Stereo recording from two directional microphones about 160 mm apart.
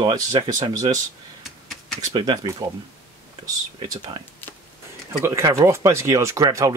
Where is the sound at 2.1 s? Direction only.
30° right (ahead or behind).